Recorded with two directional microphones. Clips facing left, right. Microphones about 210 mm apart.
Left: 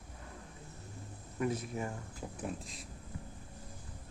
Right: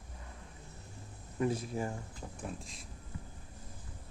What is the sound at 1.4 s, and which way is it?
Speech, 30° right (ahead or behind).